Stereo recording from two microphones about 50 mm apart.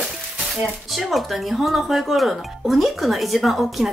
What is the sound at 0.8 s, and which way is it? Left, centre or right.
Speech, centre.